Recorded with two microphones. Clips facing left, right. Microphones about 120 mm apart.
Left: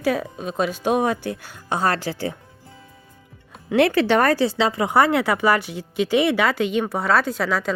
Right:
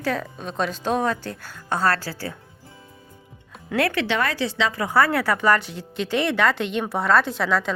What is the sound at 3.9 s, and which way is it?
Speech, 45° left (ahead or behind).